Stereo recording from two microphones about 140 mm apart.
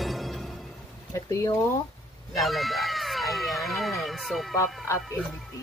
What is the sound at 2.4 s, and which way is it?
Music, centre (ahead or behind).